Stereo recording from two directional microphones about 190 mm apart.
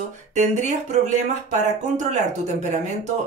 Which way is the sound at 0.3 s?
40° right (ahead or behind).